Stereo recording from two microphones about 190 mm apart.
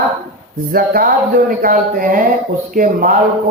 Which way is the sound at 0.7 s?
50° right (ahead or behind).